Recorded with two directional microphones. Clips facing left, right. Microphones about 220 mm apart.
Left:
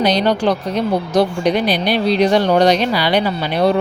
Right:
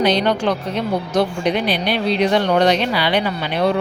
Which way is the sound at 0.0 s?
40° left (ahead or behind).